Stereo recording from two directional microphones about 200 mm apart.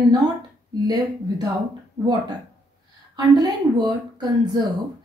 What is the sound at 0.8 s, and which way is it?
Speech, 20° right (ahead or behind).